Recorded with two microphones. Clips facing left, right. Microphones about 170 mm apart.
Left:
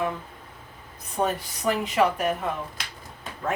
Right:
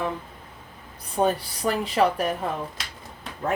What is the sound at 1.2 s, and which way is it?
A woman's voice, 35° right (ahead or behind).